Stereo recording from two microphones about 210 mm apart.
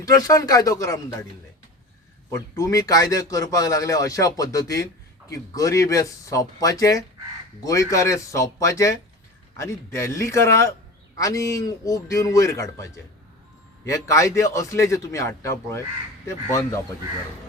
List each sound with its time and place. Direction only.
0.0 s speech: 15° left (ahead or behind)
2.3 s speech: 15° left (ahead or behind)